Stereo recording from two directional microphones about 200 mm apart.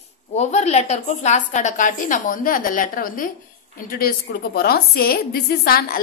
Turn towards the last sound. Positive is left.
turn(degrees=50)  # may be behind; listen again after turning